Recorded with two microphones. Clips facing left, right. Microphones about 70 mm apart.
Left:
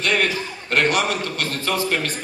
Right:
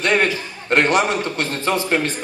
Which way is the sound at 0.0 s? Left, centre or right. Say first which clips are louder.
Right 3 dB; right.